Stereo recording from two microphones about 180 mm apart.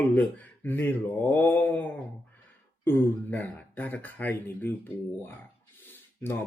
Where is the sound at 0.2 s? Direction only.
10° left (ahead or behind).